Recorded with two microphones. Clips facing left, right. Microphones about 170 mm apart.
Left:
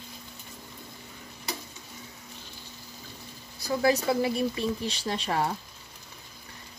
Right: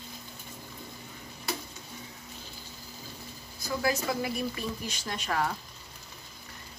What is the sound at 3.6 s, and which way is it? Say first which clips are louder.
Speech: left 5 dB; 30° left (ahead or behind).